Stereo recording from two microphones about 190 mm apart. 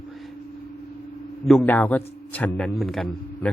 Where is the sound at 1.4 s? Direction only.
5° left (ahead or behind).